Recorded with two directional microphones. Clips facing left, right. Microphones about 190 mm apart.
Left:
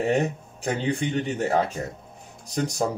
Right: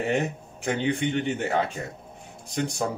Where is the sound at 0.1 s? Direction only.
35° left (ahead or behind).